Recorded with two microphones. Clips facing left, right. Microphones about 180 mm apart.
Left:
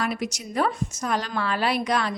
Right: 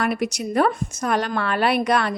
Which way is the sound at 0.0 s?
60° right (ahead or behind).